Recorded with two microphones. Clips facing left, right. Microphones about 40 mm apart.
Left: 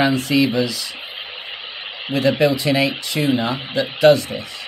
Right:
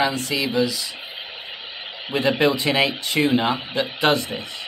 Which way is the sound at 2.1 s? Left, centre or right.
Right.